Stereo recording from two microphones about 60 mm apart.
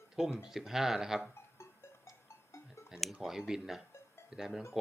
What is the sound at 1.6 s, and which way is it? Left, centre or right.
Music, left.